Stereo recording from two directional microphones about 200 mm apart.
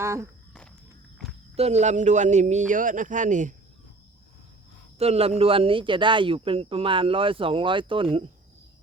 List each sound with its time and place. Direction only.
0.0 s speech: 15° right (ahead or behind)
1.5 s a man's voice: 35° right (ahead or behind)
4.9 s a man's voice: 30° right (ahead or behind)